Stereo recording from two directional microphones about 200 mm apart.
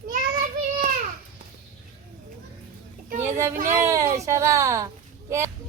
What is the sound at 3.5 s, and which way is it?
Speech, 45° right (ahead or behind).